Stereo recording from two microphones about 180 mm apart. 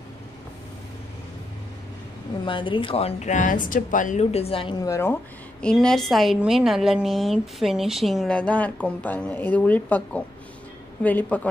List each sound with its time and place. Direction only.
2.4 s speech: 25° left (ahead or behind)
4.8 s a woman's voice: 15° left (ahead or behind)